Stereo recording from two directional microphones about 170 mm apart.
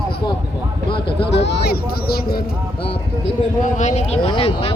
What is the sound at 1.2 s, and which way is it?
Speech, 90° left.